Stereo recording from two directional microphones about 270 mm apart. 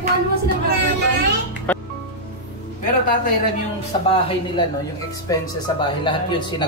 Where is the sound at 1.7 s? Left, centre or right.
Centre.